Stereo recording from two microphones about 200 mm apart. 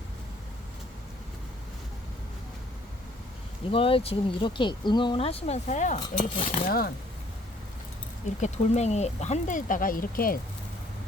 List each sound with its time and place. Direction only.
3.7 s speech: 25° left (ahead or behind)
6.7 s speech: 50° left (ahead or behind)
8.4 s speech: 35° left (ahead or behind)